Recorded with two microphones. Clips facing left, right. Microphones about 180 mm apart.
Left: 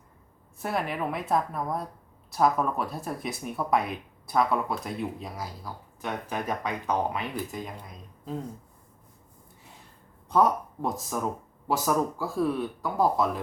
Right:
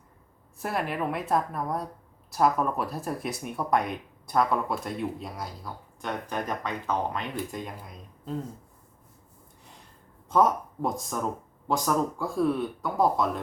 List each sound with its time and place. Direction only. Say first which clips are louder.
0.6 s speech: even; centre (ahead or behind)
10.2 s speech: even; centre (ahead or behind)